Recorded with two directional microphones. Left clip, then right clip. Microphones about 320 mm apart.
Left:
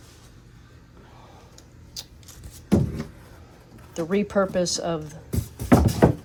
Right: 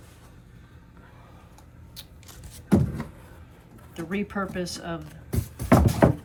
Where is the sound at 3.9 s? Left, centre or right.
Centre.